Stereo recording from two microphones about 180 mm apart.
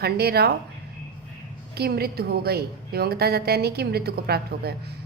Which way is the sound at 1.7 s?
60° right (ahead or behind).